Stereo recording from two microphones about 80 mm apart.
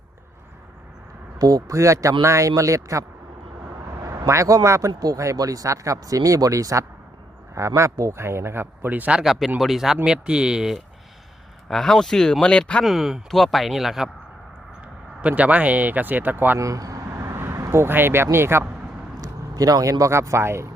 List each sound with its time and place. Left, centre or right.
1.4 s a man's voice: right
3.6 s vehicle: right
4.3 s a man's voice: right; by 10.8 s centre
11.7 s speech: centre
12.8 s speech: centre
15.2 s speech: centre
16.6 s vehicle: right
17.6 s a man's voice: right
19.2 s speech: right